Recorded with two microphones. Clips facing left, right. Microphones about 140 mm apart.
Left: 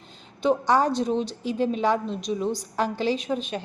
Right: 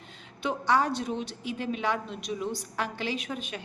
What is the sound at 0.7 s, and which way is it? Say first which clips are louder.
A woman's voice: even; 35° left (ahead or behind).